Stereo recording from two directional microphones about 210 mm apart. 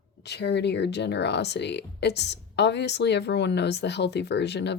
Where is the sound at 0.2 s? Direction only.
55° left (ahead or behind).